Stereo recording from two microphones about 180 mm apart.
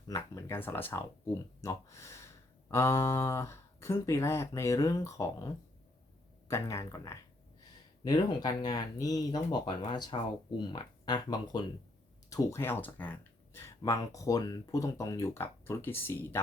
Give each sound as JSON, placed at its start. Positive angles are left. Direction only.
{"t": 0.1, "sound": "speech", "side_deg": 15}
{"t": 6.5, "sound": "speech", "side_deg": 15}